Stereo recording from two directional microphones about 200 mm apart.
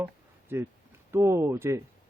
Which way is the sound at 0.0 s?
10° right (ahead or behind).